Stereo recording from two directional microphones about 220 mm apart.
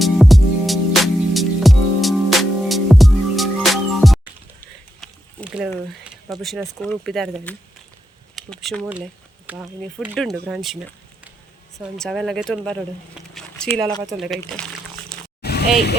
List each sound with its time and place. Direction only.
0.0 s music: centre (ahead or behind)
4.6 s a sound: 5° left (ahead or behind)
6.2 s speech: centre (ahead or behind)
13.3 s a sound: 5° left (ahead or behind)
14.2 s speech: centre (ahead or behind)
15.4 s vehicle: 45° left (ahead or behind)